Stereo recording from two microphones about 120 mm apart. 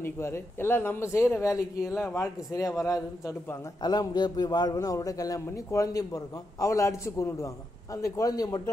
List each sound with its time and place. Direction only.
0.0 s a man's voice: 20° left (ahead or behind)